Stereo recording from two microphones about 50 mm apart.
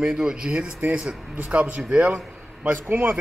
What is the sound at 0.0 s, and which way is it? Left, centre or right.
A man's voice, centre.